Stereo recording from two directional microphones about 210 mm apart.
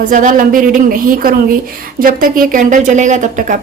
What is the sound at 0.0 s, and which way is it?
Speech, 40° right (ahead or behind).